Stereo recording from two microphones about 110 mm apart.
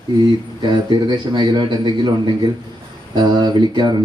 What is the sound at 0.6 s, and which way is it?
A man's voice, 45° right (ahead or behind).